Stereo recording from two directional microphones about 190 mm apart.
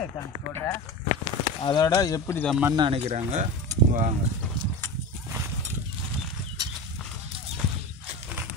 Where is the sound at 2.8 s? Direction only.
30° right (ahead or behind).